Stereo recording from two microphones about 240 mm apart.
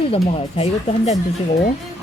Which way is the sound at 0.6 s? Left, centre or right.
Left.